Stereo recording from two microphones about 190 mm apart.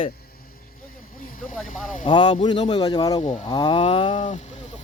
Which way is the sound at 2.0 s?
25° left (ahead or behind).